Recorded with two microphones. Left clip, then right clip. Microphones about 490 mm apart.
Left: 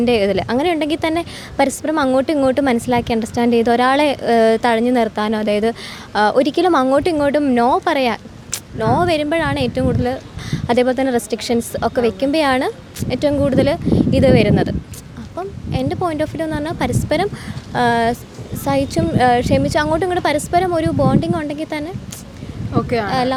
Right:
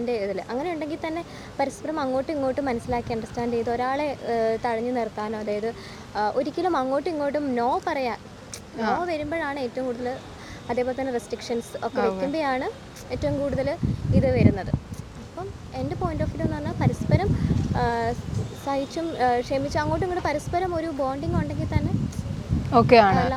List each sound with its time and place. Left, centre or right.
0.0 s a woman's voice: left
22.7 s speech: right